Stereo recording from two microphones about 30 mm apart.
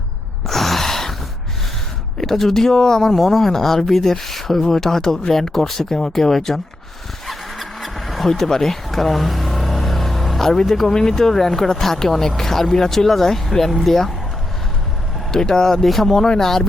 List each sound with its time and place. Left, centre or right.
0.4 s gasp: centre
2.1 s speech: centre
7.3 s vehicle: centre
10.4 s speech: centre
15.3 s speech: centre